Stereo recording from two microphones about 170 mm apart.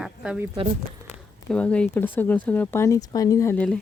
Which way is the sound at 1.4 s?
5° left (ahead or behind).